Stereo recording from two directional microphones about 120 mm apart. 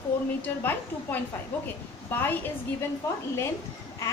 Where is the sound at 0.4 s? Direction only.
15° left (ahead or behind).